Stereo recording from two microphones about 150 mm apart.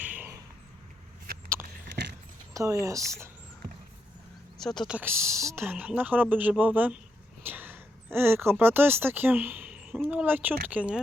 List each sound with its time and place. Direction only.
0.0 s a sound: 10° right (ahead or behind)
2.5 s speech: 20° right (ahead or behind)
4.5 s speech: 5° left (ahead or behind)
4.9 s speech: 15° right (ahead or behind)